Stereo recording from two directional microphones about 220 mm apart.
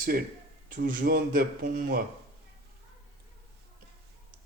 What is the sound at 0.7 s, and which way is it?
Speech, 40° right (ahead or behind).